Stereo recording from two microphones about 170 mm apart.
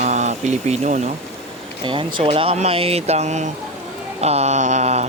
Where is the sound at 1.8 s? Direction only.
30° right (ahead or behind).